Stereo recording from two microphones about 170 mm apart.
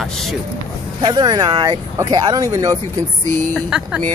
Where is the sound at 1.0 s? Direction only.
25° right (ahead or behind).